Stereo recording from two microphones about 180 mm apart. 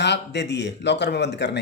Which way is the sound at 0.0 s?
70° left (ahead or behind).